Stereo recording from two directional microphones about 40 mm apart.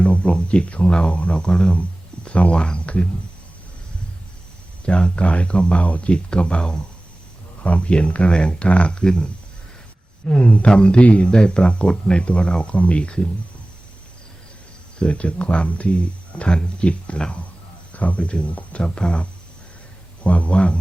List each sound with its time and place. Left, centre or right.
0.0 s speech: left
4.9 s speech: left
11.3 s speech: left
14.9 s speech: left